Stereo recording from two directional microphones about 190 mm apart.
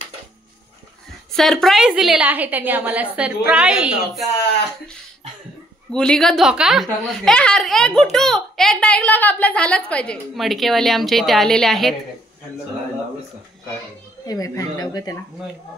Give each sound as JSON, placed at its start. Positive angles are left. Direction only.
{"t": 1.3, "sound": "a woman's voice", "side_deg": 0}
{"t": 5.9, "sound": "a woman's voice", "side_deg": 5}
{"t": 14.2, "sound": "speech", "side_deg": 20}